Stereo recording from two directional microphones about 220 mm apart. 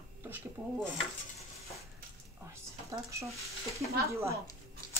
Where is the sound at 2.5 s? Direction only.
15° right (ahead or behind).